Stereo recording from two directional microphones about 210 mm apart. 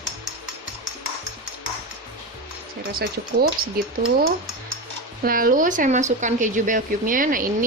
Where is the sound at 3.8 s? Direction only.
45° right (ahead or behind).